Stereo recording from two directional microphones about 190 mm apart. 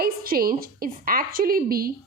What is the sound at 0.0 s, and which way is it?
A woman's voice, 50° right (ahead or behind).